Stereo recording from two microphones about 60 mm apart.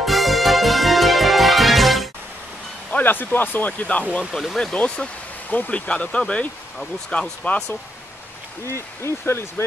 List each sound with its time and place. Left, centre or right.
0.0 s music: centre
2.9 s speech: left
4.3 s speech: centre
4.7 s speech: centre
8.7 s speech: left